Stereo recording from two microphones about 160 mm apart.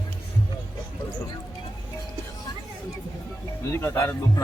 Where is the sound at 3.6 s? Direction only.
15° left (ahead or behind).